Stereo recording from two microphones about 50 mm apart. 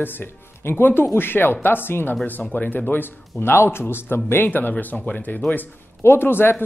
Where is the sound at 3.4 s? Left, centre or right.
Left.